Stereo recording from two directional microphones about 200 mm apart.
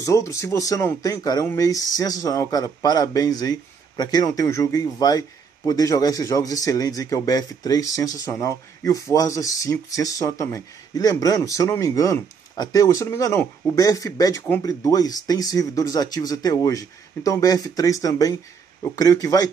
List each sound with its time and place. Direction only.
0.0 s speech: 15° left (ahead or behind)